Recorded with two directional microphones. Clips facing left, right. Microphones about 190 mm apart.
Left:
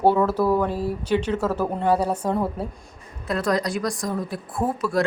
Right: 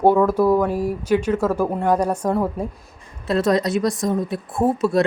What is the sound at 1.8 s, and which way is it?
Speech, 10° left (ahead or behind).